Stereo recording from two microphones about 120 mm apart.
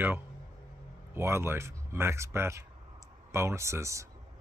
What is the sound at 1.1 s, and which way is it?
Speech, 20° right (ahead or behind).